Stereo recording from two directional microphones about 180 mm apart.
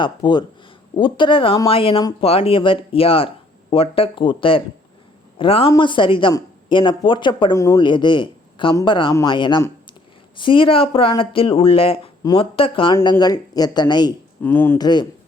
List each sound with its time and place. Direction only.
0.0 s speech: 25° left (ahead or behind)
14.4 s speech: 10° left (ahead or behind)
14.8 s speech: 25° left (ahead or behind)